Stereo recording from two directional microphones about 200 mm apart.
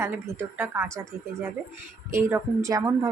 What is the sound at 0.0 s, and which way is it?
Speech, 10° right (ahead or behind).